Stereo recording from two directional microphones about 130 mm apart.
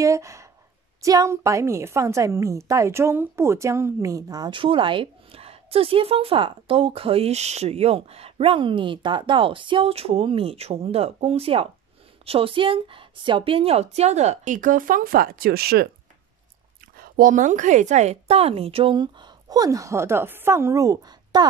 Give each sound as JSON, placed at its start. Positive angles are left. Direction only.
{"t": 0.0, "sound": "a woman's voice", "side_deg": -25}
{"t": 16.9, "sound": "a woman's voice", "side_deg": -90}
{"t": 18.9, "sound": "a woman's voice", "side_deg": -35}